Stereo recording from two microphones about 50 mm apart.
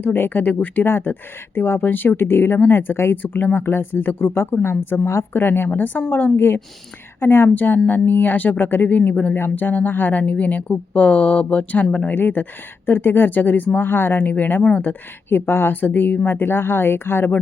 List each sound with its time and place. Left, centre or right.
0.0 s speech: left
0.9 s speech: left
7.5 s speech: left
12.1 s speech: left